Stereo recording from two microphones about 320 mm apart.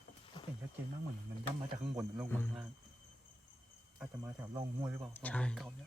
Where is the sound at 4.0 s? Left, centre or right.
Centre.